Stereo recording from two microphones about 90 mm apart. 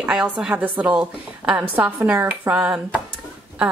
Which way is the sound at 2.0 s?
30° right (ahead or behind).